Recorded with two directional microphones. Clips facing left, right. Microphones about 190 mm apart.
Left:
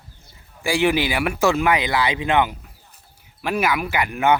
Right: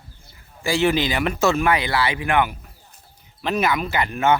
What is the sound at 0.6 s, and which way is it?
Speech, 15° left (ahead or behind).